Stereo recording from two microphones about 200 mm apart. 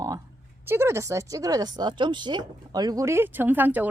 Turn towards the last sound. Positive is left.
turn(degrees=-10)  # may be behind; listen again after turning